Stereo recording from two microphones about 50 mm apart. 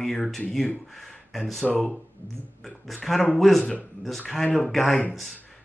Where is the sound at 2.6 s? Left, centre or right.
Centre.